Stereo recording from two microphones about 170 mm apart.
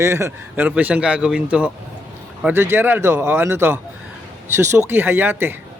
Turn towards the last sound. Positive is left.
turn(degrees=-10)  # may be behind; listen again after turning